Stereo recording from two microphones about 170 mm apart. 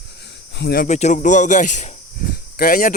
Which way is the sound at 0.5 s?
75° left (ahead or behind).